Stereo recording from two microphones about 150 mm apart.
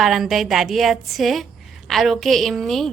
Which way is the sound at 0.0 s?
Centre (ahead or behind).